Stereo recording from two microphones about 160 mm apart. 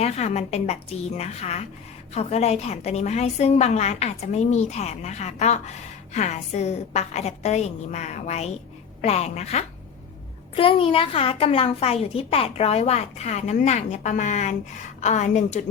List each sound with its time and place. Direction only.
0.0 s a woman's voice: 45° left (ahead or behind)